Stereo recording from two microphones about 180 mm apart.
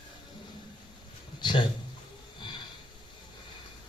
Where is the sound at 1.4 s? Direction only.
25° left (ahead or behind).